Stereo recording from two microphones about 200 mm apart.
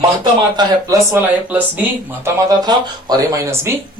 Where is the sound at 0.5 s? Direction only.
15° right (ahead or behind).